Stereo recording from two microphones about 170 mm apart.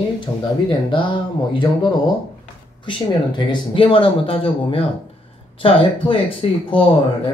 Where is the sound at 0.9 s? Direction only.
30° left (ahead or behind).